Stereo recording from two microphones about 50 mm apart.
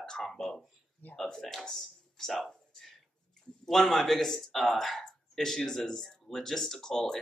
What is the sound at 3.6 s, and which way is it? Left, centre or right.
A man's voice, centre.